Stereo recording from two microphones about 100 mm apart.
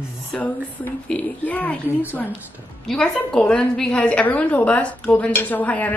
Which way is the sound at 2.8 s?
5° left (ahead or behind).